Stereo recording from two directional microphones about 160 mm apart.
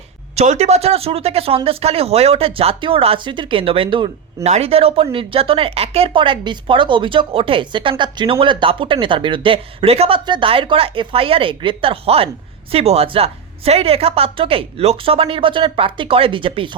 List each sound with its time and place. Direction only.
0.3 s a woman's voice: 45° right (ahead or behind)